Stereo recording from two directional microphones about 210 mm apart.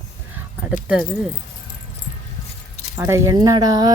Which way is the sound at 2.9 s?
15° right (ahead or behind).